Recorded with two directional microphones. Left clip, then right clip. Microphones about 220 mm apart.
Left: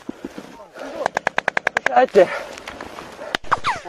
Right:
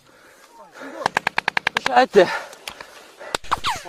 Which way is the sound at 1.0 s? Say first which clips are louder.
Even; 55° right (ahead or behind).